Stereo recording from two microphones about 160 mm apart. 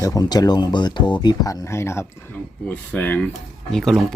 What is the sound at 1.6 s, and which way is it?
Speech, 15° left (ahead or behind).